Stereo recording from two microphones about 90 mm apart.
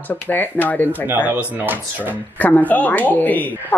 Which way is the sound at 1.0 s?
20° right (ahead or behind).